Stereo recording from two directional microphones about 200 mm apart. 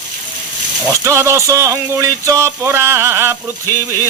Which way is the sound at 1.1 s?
15° right (ahead or behind).